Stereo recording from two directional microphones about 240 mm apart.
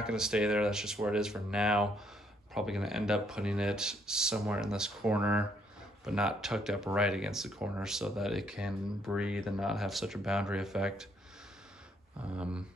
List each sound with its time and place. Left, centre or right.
0.0 s speech: centre
12.2 s speech: centre